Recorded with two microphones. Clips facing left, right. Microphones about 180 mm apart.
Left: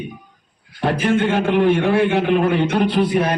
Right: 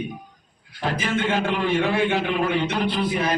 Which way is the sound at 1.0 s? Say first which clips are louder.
Left 6 dB; 60° left (ahead or behind).